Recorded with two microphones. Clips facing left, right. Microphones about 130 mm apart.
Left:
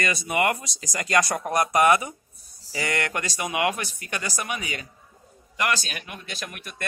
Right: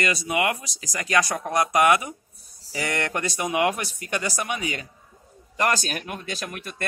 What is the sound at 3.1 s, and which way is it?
Speech, 20° right (ahead or behind).